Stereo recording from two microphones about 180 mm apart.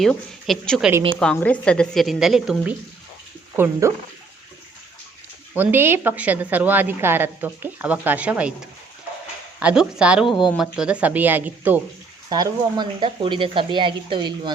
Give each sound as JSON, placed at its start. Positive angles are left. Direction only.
{"t": 0.0, "sound": "a woman's voice", "side_deg": 0}
{"t": 3.6, "sound": "a woman's voice", "side_deg": -15}
{"t": 5.5, "sound": "a woman's voice", "side_deg": -10}
{"t": 9.6, "sound": "a woman's voice", "side_deg": -5}
{"t": 12.3, "sound": "speech", "side_deg": -25}